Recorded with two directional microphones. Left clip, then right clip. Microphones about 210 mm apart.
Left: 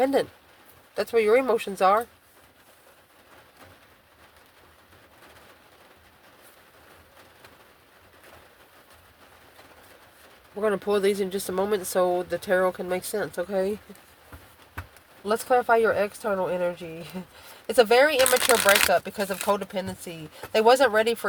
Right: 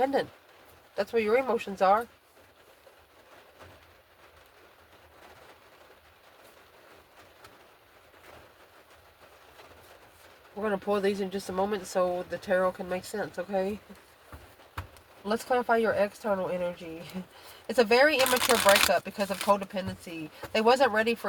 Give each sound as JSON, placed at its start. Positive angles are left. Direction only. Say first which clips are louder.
{"t": 0.0, "sound": "speech", "louder": "left 4 dB", "side_deg": 50}
{"t": 10.6, "sound": "speech", "louder": "left 5 dB", "side_deg": 50}
{"t": 15.2, "sound": "speech", "louder": "left 5 dB", "side_deg": 45}
{"t": 18.3, "sound": "speech", "louder": "left 2 dB", "side_deg": 20}
{"t": 18.9, "sound": "speech", "louder": "left 4 dB", "side_deg": 45}